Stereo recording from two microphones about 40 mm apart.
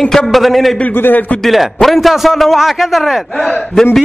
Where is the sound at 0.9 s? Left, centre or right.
Left.